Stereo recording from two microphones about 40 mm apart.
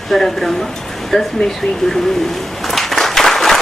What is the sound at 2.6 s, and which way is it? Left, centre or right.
Applause, centre.